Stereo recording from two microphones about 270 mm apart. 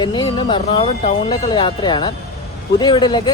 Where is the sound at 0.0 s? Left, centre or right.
Centre.